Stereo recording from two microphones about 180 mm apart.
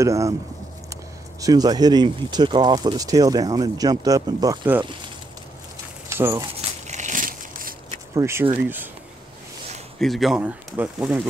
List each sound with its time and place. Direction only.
0.0 s speech: 15° right (ahead or behind)
1.4 s speech: 20° right (ahead or behind)
6.0 s speech: 15° right (ahead or behind)
6.9 s crushing: 45° right (ahead or behind)
8.1 s speech: 15° right (ahead or behind)
9.9 s speech: centre (ahead or behind)